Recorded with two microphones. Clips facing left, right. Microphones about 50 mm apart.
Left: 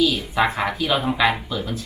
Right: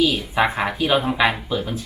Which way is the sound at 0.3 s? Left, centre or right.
Centre.